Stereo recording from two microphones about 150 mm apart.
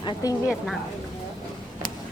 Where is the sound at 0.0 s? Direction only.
25° left (ahead or behind).